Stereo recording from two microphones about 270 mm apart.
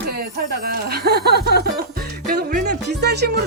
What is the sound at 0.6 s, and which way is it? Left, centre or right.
Music, right.